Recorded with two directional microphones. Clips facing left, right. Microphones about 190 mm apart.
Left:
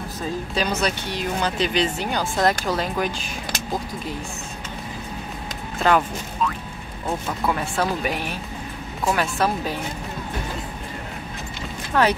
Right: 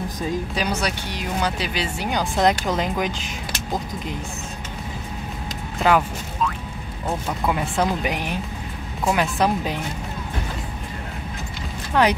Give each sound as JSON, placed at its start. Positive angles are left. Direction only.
{"t": 0.6, "sound": "speech", "side_deg": -10}
{"t": 5.8, "sound": "speech", "side_deg": -10}
{"t": 7.4, "sound": "speech", "side_deg": -15}
{"t": 11.9, "sound": "speech", "side_deg": -15}